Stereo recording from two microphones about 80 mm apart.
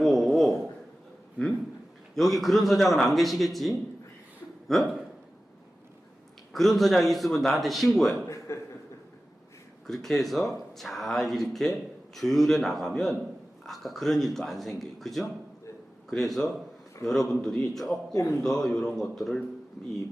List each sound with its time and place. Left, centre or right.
0.0 s a sound: centre
2.1 s speech: centre
6.5 s speech: centre
8.5 s speech: left
9.8 s speech: centre
18.1 s a man's voice: left
18.4 s speech: centre